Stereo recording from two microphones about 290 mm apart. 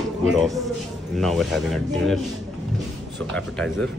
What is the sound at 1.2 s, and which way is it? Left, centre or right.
A man's voice, centre.